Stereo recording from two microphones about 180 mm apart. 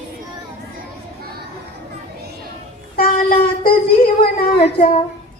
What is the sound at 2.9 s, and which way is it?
Child singing, 55° left (ahead or behind).